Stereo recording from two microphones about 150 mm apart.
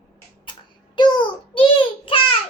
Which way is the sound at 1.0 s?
30° left (ahead or behind).